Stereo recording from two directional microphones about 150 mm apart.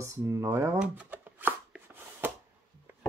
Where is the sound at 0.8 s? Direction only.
10° right (ahead or behind).